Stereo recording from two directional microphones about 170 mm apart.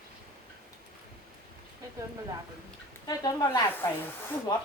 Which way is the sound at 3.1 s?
20° left (ahead or behind).